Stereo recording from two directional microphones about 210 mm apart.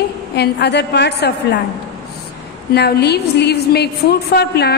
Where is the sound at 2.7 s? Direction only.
50° left (ahead or behind).